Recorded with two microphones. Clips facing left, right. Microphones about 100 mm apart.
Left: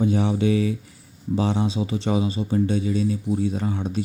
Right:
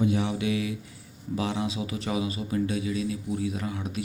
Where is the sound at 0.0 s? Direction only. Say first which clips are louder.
Left 5 dB; 35° left (ahead or behind).